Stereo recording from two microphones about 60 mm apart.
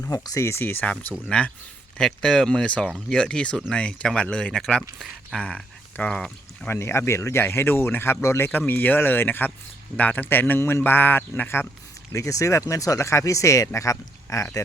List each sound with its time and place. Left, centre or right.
0.1 s speech: left
0.6 s speech: left
1.3 s speech: centre
6.7 s speech: left
8.4 s speech: left
12.1 s speech: left